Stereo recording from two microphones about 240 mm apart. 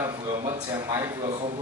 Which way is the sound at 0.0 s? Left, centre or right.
Centre.